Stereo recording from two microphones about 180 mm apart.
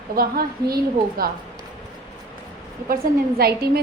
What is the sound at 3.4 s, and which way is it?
Speech, 60° right (ahead or behind).